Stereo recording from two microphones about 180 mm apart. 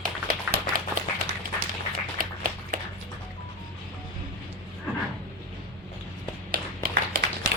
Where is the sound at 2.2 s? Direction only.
50° right (ahead or behind).